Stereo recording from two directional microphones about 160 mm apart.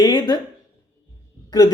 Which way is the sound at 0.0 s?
25° left (ahead or behind).